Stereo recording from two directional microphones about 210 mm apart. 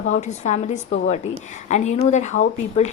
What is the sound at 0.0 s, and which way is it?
A woman's voice, 35° left (ahead or behind).